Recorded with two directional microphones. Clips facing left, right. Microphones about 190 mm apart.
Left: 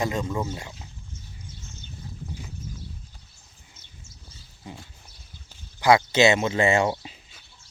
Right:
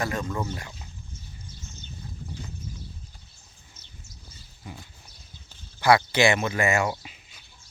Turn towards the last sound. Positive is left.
turn(degrees=30)  # may be behind; listen again after turning